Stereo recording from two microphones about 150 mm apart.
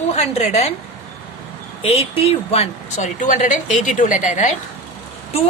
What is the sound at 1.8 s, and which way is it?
Speech, 40° left (ahead or behind).